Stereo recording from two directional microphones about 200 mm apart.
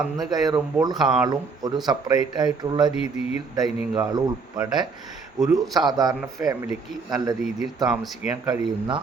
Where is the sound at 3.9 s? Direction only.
15° right (ahead or behind).